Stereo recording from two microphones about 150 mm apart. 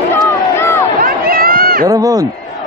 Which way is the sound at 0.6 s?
15° left (ahead or behind).